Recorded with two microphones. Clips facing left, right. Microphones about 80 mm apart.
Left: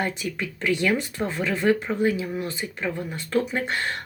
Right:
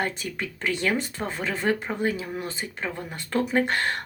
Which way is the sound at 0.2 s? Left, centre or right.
Right.